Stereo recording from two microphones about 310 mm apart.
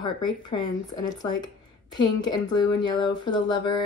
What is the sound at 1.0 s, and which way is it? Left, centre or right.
A woman's voice, centre.